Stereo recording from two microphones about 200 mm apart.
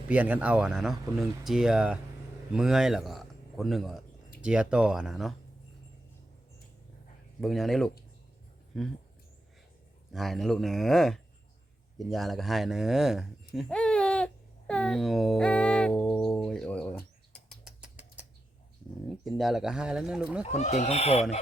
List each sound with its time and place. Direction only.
0.1 s speech: 5° right (ahead or behind)
7.4 s speech: centre (ahead or behind)
10.1 s speech: centre (ahead or behind)
13.5 s a sound: centre (ahead or behind)
19.0 s speech: centre (ahead or behind)
20.6 s speech: 35° left (ahead or behind)